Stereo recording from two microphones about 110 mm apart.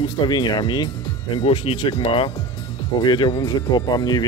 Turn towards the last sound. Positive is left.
turn(degrees=40)  # may be behind; listen again after turning